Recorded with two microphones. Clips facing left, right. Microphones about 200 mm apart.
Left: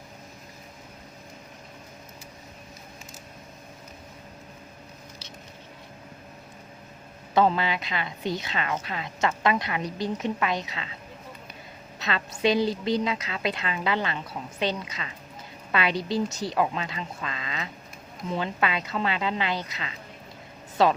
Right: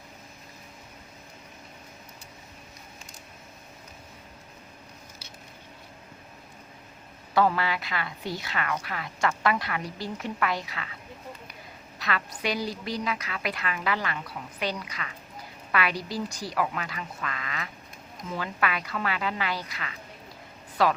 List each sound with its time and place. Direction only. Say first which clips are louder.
7.3 s a woman's voice: left 2 dB; 20° left (ahead or behind)
11.9 s a woman's voice: left 1 dB; 25° left (ahead or behind)